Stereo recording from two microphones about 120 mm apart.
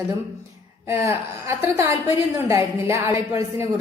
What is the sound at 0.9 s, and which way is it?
A woman's voice, 20° right (ahead or behind).